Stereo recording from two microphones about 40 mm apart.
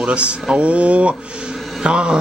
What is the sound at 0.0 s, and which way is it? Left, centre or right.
Speech, right.